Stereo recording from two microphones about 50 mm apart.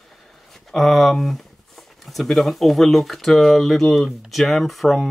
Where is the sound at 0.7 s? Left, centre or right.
Centre.